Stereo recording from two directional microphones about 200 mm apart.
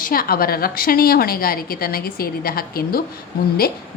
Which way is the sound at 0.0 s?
45° left (ahead or behind).